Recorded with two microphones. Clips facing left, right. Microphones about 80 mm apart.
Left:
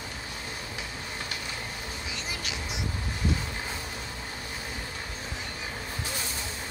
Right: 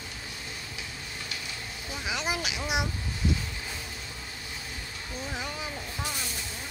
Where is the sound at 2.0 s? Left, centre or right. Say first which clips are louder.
Right 9 dB; right.